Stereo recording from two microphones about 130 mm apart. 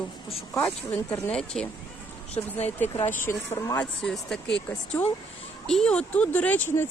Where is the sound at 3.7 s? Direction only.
5° left (ahead or behind).